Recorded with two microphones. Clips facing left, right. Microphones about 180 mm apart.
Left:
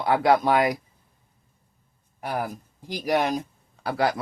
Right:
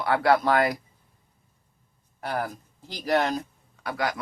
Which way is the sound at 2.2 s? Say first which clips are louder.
Left 1 dB; 10° left (ahead or behind).